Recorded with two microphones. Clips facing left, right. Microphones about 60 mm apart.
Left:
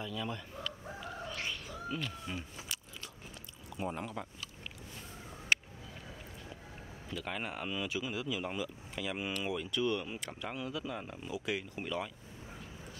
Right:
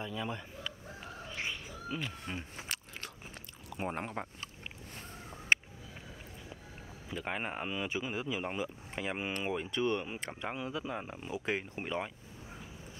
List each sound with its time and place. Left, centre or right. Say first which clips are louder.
0.0 s speech: right 1 dB; centre
1.2 s cat: right 2 dB; centre
3.7 s speech: right 1 dB; right
5.5 s a sound: right 2 dB; right
7.2 s speech: right 2 dB; right